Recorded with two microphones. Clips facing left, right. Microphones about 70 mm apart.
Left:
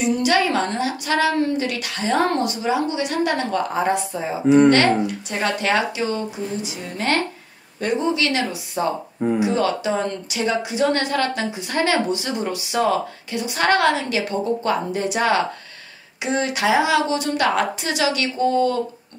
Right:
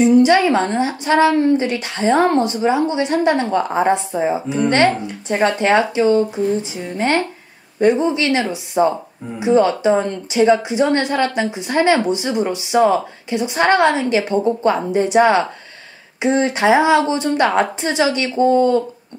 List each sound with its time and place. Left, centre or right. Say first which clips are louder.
0.0 s speech: right 7 dB; right